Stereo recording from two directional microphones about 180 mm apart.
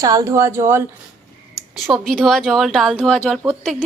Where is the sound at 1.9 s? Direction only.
Centre (ahead or behind).